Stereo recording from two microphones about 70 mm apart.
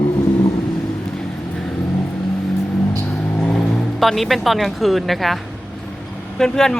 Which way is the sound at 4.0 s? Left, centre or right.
Centre.